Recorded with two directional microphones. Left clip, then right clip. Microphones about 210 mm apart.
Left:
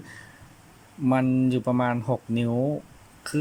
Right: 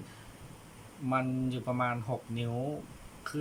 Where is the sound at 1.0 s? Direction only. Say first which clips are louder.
Left 9 dB; 40° left (ahead or behind).